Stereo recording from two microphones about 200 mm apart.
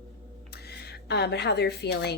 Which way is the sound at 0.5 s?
55° left (ahead or behind).